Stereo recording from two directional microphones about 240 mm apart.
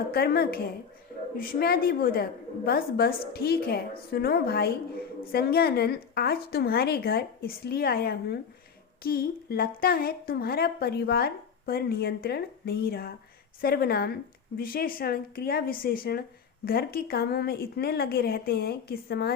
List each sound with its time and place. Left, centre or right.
0.1 s a woman's voice: left